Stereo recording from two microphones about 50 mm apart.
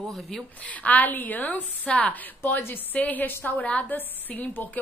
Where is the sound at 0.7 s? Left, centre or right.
Left.